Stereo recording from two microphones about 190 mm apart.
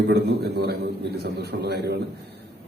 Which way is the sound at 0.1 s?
60° right (ahead or behind).